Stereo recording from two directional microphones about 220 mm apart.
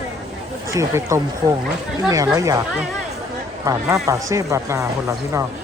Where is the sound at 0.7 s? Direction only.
15° right (ahead or behind).